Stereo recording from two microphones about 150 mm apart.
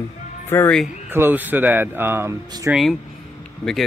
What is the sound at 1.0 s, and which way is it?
Speech, 15° right (ahead or behind).